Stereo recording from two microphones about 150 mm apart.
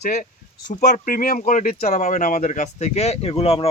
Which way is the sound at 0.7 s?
65° left (ahead or behind).